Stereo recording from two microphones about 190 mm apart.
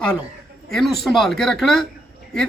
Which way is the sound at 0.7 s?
Centre (ahead or behind).